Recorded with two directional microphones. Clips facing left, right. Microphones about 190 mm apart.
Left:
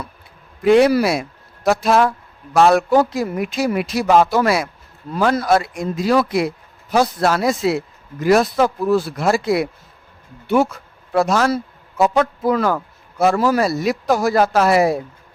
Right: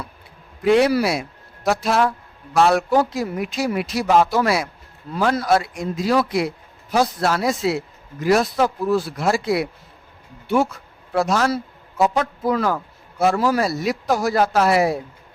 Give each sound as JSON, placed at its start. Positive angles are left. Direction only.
{"t": 0.6, "sound": "speech", "side_deg": 50}
{"t": 11.1, "sound": "a man's voice", "side_deg": 55}